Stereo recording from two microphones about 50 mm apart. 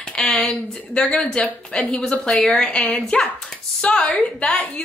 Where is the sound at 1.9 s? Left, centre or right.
Centre.